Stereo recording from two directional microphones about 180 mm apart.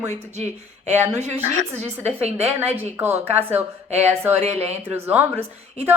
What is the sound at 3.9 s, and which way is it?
Speech, 35° right (ahead or behind).